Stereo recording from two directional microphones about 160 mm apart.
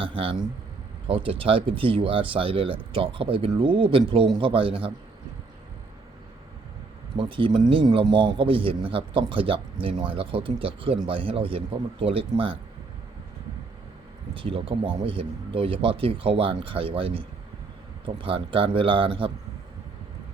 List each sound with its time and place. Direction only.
0.0 s a man's voice: 35° right (ahead or behind)
7.2 s a man's voice: 30° right (ahead or behind)
14.3 s a man's voice: 35° right (ahead or behind)